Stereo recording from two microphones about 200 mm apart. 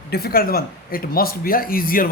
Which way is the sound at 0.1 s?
50° left (ahead or behind).